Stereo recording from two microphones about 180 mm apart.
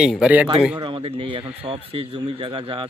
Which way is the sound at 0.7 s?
30° right (ahead or behind).